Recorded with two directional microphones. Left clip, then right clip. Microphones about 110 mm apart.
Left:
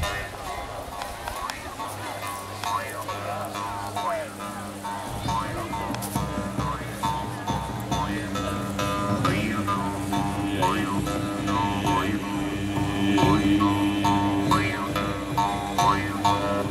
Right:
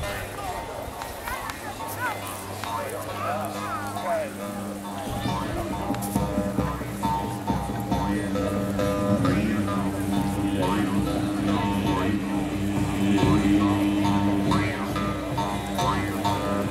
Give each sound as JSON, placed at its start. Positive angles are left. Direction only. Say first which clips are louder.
{"t": 7.0, "sound": "music", "louder": "right 3 dB", "side_deg": 15}
{"t": 13.1, "sound": "music", "louder": "left 1 dB", "side_deg": 20}